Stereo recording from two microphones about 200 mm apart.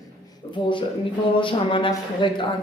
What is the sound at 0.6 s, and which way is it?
A woman's voice, 25° left (ahead or behind).